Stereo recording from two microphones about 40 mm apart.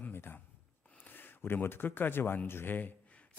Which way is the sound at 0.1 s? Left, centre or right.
Left.